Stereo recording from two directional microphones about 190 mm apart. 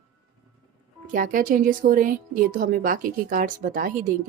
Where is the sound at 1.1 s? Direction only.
45° right (ahead or behind).